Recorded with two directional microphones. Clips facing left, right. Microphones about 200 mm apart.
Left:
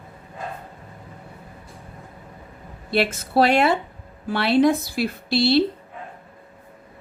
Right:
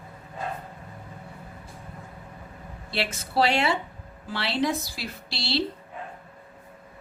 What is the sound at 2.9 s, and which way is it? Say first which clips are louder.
A woman's voice: left 8 dB; 55° left (ahead or behind).